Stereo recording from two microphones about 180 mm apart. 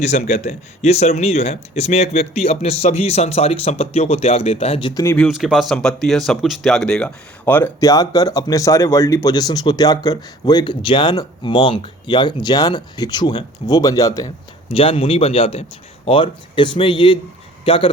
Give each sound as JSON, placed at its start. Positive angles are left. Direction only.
{"t": 0.0, "sound": "speech", "side_deg": 40}
{"t": 5.1, "sound": "speech", "side_deg": 0}
{"t": 14.7, "sound": "speech", "side_deg": 30}